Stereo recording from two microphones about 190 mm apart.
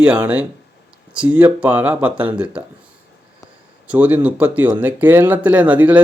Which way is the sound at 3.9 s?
10° right (ahead or behind).